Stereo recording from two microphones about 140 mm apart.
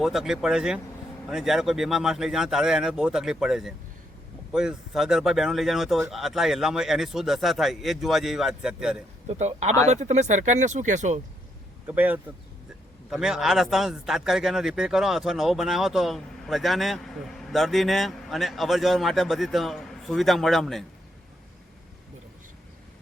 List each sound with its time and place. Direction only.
0.0 s a man's voice: centre (ahead or behind)
9.2 s a man's voice: 50° right (ahead or behind)
11.9 s a man's voice: 10° right (ahead or behind)